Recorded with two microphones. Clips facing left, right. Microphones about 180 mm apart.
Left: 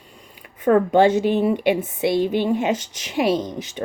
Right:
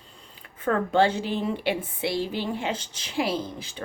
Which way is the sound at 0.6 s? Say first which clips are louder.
Left 7 dB; 15° left (ahead or behind).